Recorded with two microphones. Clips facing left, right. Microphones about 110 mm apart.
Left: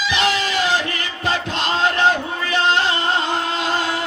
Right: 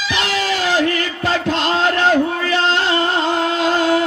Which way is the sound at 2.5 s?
20° left (ahead or behind).